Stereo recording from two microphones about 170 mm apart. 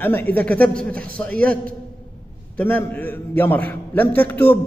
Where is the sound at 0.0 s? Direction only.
10° left (ahead or behind).